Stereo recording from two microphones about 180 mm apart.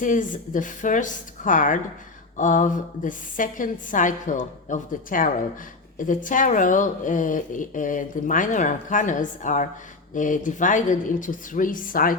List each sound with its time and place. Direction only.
0.0 s speech: 45° left (ahead or behind)